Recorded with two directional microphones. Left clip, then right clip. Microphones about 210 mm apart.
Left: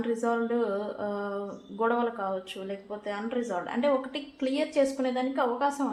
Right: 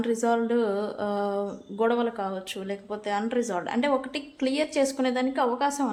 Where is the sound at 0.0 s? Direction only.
40° right (ahead or behind).